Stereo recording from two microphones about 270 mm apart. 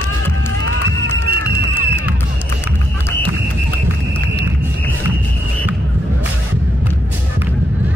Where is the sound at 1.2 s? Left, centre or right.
Right.